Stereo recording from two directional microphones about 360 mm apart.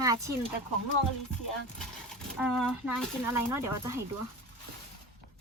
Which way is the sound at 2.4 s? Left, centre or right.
Centre.